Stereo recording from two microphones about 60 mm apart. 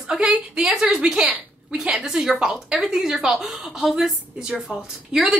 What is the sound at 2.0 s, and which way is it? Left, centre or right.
A woman's voice, centre.